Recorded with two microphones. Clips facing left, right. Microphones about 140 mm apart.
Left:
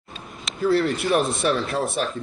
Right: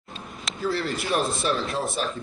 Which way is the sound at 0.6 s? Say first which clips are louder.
Left 7 dB; 60° left (ahead or behind).